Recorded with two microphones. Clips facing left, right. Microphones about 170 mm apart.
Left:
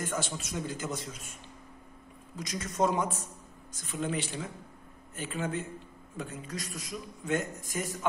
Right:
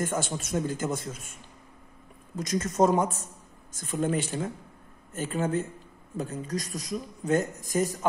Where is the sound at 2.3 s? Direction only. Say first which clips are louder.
Right 8 dB; 45° right (ahead or behind).